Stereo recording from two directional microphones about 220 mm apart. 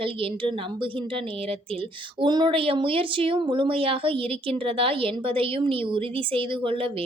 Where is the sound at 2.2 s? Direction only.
20° right (ahead or behind).